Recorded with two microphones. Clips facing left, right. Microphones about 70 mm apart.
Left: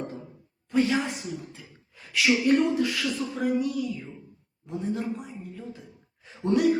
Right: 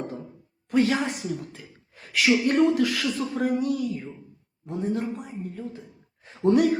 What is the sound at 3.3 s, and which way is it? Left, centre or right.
A woman's voice, right.